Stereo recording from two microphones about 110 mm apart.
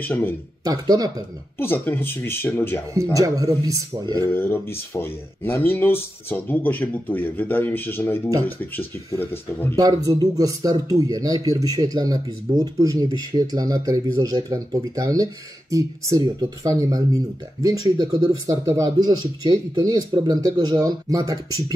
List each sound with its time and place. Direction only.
0.0 s speech: 20° left (ahead or behind)
0.7 s speech: 35° right (ahead or behind)
1.6 s speech: 20° left (ahead or behind)
2.9 s speech: 30° right (ahead or behind)
4.3 s speech: 20° left (ahead or behind)
9.3 s speech: 20° left (ahead or behind)
9.8 s speech: 35° right (ahead or behind)